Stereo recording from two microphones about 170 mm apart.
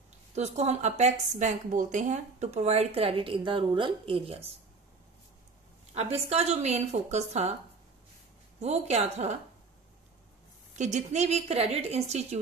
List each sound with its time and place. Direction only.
0.3 s a woman's voice: 40° right (ahead or behind)
5.9 s a woman's voice: 40° right (ahead or behind)
8.5 s a woman's voice: 40° right (ahead or behind)
10.8 s a woman's voice: 45° right (ahead or behind)